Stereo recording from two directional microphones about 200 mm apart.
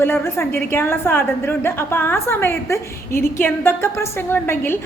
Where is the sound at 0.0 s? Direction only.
10° left (ahead or behind).